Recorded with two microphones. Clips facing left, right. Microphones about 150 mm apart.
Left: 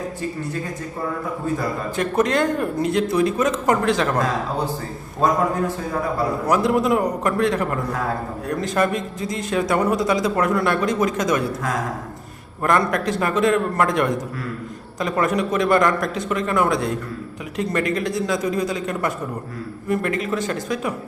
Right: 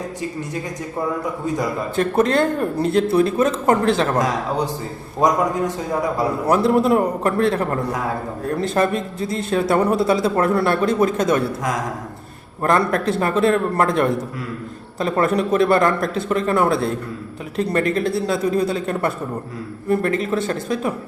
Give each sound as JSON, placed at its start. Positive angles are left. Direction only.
{"t": 2.0, "sound": "speech", "side_deg": -30}
{"t": 5.2, "sound": "a man's voice", "side_deg": -15}
{"t": 6.5, "sound": "speech", "side_deg": -30}
{"t": 12.6, "sound": "speech", "side_deg": -30}